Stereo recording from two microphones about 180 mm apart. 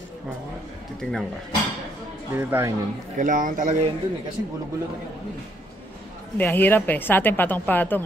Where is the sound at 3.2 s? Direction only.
45° right (ahead or behind).